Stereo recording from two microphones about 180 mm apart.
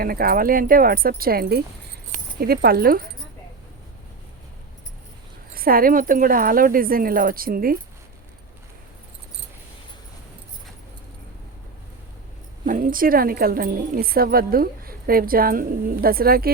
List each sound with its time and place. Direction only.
0.0 s a woman's voice: 55° right (ahead or behind)
5.5 s speech: 55° right (ahead or behind)
12.6 s a woman's voice: 45° right (ahead or behind)